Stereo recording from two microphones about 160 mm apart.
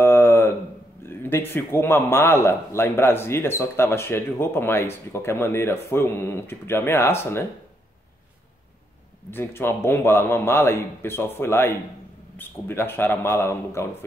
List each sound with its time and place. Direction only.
0.0 s a sound: 15° left (ahead or behind)
1.0 s a man's voice: 15° left (ahead or behind)
9.3 s a man's voice: 15° left (ahead or behind)